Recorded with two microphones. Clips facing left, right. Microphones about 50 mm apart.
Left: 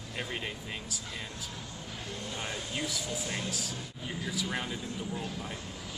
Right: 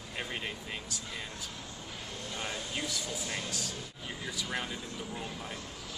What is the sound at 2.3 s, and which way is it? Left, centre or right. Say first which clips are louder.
Speech: even; centre.